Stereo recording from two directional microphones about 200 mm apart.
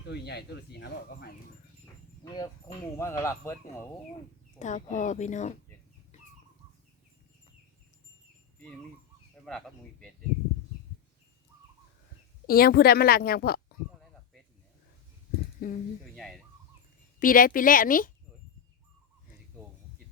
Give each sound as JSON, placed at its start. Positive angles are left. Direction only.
{"t": 0.0, "sound": "speech", "side_deg": 55}
{"t": 2.2, "sound": "speech", "side_deg": 20}
{"t": 4.6, "sound": "speech", "side_deg": 40}
{"t": 9.5, "sound": "speech", "side_deg": 0}
{"t": 12.5, "sound": "a woman's voice", "side_deg": 50}
{"t": 15.6, "sound": "a woman's voice", "side_deg": 45}
{"t": 16.1, "sound": "fowl", "side_deg": 0}
{"t": 17.2, "sound": "a woman's voice", "side_deg": 45}